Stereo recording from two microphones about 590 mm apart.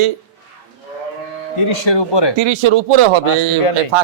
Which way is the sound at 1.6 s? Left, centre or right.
Left.